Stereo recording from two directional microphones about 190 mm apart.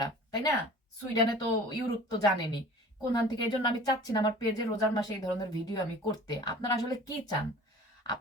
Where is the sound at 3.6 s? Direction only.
20° left (ahead or behind).